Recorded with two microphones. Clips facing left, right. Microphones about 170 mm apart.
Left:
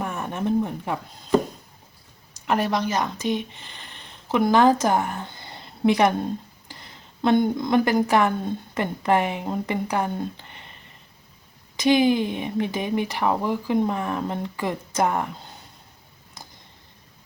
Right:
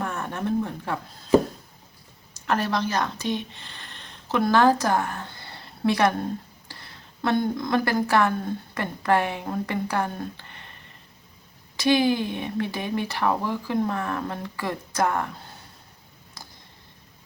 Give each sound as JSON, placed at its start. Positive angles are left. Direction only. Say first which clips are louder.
{"t": 0.0, "sound": "a sound", "louder": "left 2 dB", "side_deg": 15}
{"t": 2.5, "sound": "speech", "louder": "left 2 dB", "side_deg": 15}
{"t": 11.8, "sound": "speech", "louder": "left 2 dB", "side_deg": 20}